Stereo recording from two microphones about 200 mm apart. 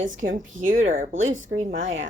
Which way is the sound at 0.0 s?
70° right (ahead or behind).